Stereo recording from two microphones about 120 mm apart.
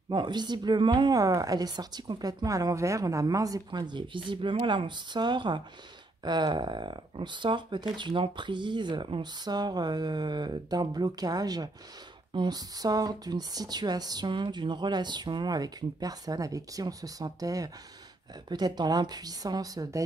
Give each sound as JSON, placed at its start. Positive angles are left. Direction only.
{"t": 0.1, "sound": "a woman's voice", "side_deg": -40}